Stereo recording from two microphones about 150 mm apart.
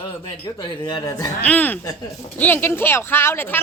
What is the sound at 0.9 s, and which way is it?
Speech, 25° left (ahead or behind).